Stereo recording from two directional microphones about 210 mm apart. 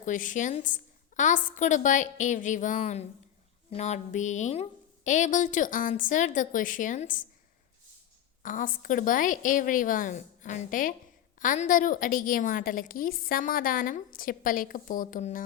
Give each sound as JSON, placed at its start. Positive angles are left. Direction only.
{"t": 0.0, "sound": "a woman's voice", "side_deg": 40}
{"t": 8.4, "sound": "a woman's voice", "side_deg": 40}